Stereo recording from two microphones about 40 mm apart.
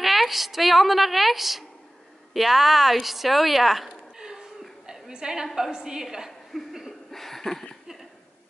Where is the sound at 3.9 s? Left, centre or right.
Centre.